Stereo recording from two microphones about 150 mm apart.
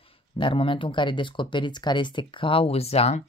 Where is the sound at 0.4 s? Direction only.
35° left (ahead or behind).